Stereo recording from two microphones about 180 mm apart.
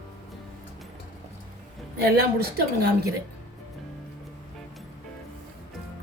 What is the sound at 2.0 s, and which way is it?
Speech, 60° right (ahead or behind).